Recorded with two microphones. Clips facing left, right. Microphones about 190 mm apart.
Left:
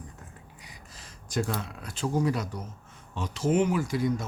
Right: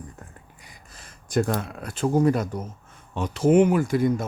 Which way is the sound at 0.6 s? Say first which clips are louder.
Even; 50° right (ahead or behind).